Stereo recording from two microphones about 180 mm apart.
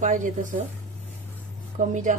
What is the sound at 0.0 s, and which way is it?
Speech, 45° right (ahead or behind).